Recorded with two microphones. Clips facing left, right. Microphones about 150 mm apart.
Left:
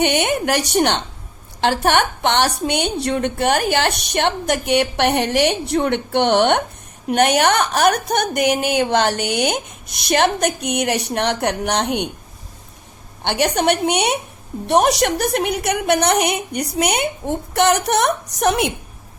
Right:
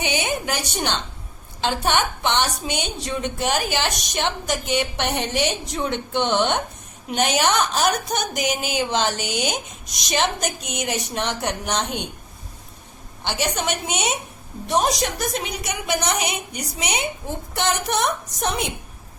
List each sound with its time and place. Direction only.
0.0 s a woman's voice: 65° left (ahead or behind)
13.2 s a woman's voice: 65° left (ahead or behind)